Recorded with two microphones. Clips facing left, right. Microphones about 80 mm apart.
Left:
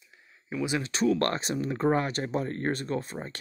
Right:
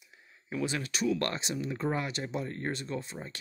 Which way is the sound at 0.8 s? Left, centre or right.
Left.